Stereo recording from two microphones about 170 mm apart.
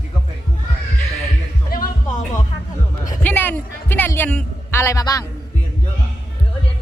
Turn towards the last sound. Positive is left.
turn(degrees=20)  # may be behind; listen again after turning